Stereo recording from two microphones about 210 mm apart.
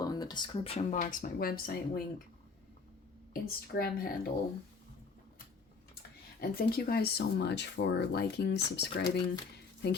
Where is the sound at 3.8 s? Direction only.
45° left (ahead or behind).